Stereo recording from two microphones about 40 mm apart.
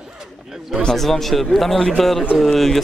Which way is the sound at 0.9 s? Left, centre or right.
Centre.